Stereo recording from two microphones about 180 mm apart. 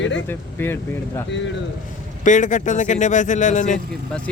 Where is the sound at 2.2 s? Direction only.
45° left (ahead or behind).